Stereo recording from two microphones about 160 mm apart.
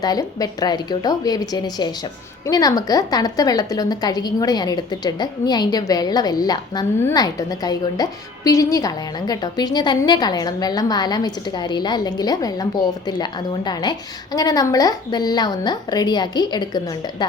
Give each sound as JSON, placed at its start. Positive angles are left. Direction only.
{"t": 0.0, "sound": "a woman's voice", "side_deg": 25}